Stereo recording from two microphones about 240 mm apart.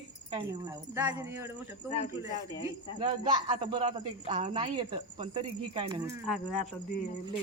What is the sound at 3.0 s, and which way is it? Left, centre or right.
Speech, right.